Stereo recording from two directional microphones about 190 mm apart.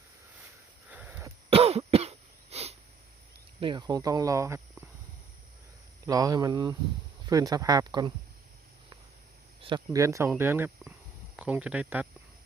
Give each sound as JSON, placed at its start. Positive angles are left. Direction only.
{"t": 0.9, "sound": "sniff", "side_deg": -10}
{"t": 1.5, "sound": "cough", "side_deg": -30}
{"t": 3.6, "sound": "speech", "side_deg": -25}
{"t": 6.1, "sound": "speech", "side_deg": -20}
{"t": 9.6, "sound": "speech", "side_deg": -25}